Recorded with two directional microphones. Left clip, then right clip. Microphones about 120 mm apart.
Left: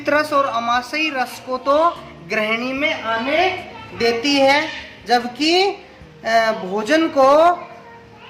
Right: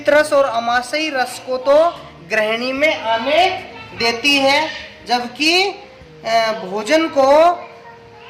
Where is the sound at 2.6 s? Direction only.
20° right (ahead or behind).